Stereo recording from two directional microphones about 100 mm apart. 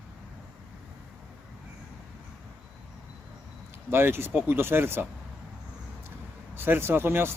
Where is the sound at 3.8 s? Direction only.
25° right (ahead or behind).